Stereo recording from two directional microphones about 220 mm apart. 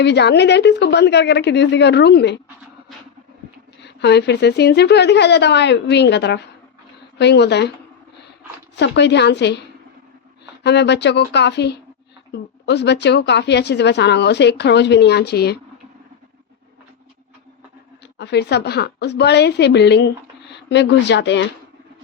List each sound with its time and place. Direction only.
0.0 s a woman's voice: 50° left (ahead or behind)
3.8 s a woman's voice: 50° left (ahead or behind)
8.7 s a woman's voice: 50° left (ahead or behind)
10.6 s a woman's voice: 50° left (ahead or behind)
18.2 s a woman's voice: 50° left (ahead or behind)